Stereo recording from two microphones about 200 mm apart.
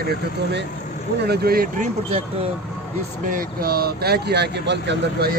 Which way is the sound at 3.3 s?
45° right (ahead or behind).